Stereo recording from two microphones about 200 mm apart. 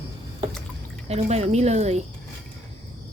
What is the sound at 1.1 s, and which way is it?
Speech, 30° right (ahead or behind).